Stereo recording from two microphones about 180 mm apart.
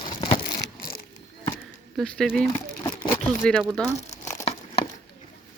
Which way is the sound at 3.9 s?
40° left (ahead or behind).